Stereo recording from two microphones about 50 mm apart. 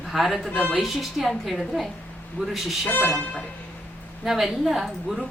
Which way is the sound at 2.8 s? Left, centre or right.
Left.